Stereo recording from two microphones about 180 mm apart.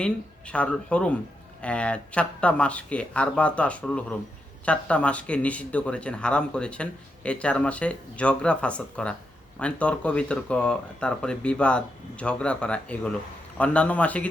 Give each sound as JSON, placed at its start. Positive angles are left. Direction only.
{"t": 0.0, "sound": "speech", "side_deg": 5}